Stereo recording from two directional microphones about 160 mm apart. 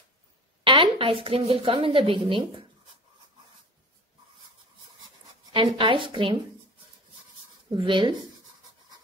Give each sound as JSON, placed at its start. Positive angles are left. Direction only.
{"t": 0.7, "sound": "a woman's voice", "side_deg": -35}
{"t": 5.5, "sound": "a woman's voice", "side_deg": -30}
{"t": 7.7, "sound": "a woman's voice", "side_deg": -30}